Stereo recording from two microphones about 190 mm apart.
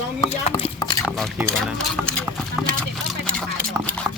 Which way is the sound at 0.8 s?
20° left (ahead or behind).